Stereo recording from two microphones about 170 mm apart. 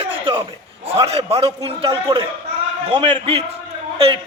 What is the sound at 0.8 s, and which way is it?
A man's voice, 35° right (ahead or behind).